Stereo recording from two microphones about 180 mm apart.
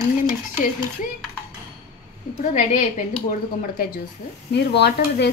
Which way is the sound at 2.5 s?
45° left (ahead or behind).